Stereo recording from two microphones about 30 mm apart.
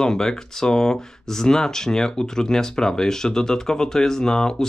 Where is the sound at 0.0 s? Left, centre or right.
Left.